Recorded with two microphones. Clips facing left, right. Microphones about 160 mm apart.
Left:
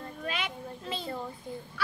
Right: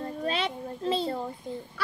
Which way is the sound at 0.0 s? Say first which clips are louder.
Right 6 dB; 30° right (ahead or behind).